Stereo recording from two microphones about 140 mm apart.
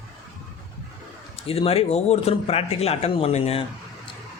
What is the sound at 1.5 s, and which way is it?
Speech, 45° left (ahead or behind).